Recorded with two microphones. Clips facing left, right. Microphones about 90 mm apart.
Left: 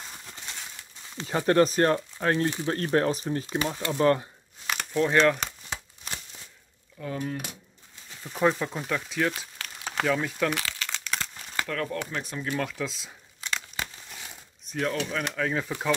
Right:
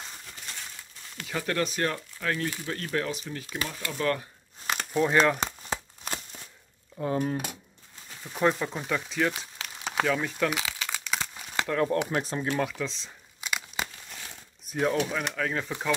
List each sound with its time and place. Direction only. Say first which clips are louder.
1.1 s speech: left 8 dB; 30° left (ahead or behind)
3.4 s speech: left 6 dB; 25° left (ahead or behind)
4.9 s speech: left 1 dB; 10° right (ahead or behind)
5.4 s a sound: right 3 dB; 40° right (ahead or behind)
7.0 s speech: right 4 dB; 30° right (ahead or behind)
8.2 s speech: left 1 dB; centre (ahead or behind)
10.0 s crumpling: left 2 dB; centre (ahead or behind)
11.6 s speech: right 5 dB; 20° right (ahead or behind)
12.1 s speech: right 4 dB; 35° right (ahead or behind)
12.6 s speech: even; centre (ahead or behind)
13.4 s crumpling: right 1 dB; 15° right (ahead or behind)
14.1 s crumpling: even; 5° left (ahead or behind)
14.7 s speech: right 2 dB; 15° right (ahead or behind)
15.0 s speech: left 1 dB; 5° right (ahead or behind)